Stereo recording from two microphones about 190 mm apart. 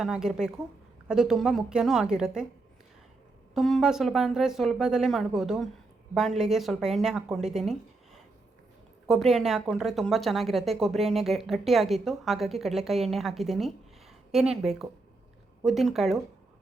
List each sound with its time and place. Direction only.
0.0 s a woman's voice: 5° right (ahead or behind)
3.5 s a woman's voice: centre (ahead or behind)